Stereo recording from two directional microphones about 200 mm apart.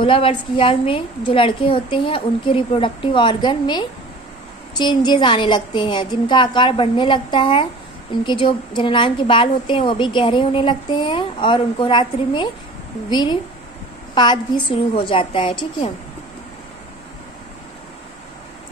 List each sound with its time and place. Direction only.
0.0 s a woman's voice: 25° left (ahead or behind)